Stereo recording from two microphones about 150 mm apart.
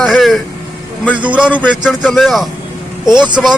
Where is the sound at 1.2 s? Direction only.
10° right (ahead or behind).